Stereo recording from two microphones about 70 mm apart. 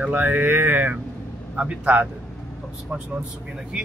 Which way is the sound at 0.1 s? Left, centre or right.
Right.